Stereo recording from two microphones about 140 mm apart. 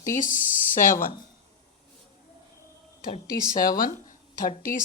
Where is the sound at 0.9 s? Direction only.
80° left.